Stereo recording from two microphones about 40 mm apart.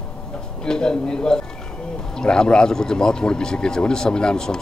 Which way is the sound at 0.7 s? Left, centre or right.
Centre.